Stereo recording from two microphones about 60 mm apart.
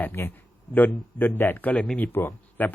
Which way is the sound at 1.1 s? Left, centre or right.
Left.